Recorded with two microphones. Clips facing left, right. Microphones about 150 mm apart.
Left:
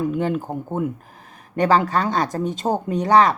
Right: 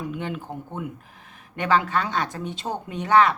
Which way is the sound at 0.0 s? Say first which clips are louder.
Left 9 dB; 45° left (ahead or behind).